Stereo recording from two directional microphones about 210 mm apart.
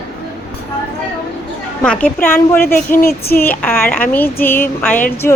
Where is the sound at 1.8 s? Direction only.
5° left (ahead or behind).